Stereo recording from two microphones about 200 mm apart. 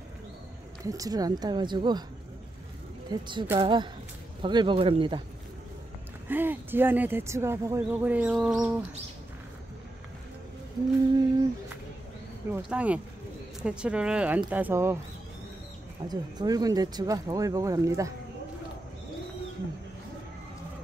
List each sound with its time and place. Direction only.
0.8 s a woman's voice: 15° right (ahead or behind)
3.1 s a woman's voice: 25° right (ahead or behind)
6.2 s speech: 10° right (ahead or behind)
12.4 s speech: 5° right (ahead or behind)
16.1 s speech: 20° right (ahead or behind)